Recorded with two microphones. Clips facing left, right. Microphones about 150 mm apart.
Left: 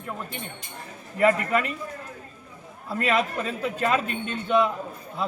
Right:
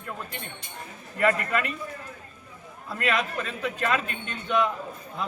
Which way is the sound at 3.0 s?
35° left (ahead or behind).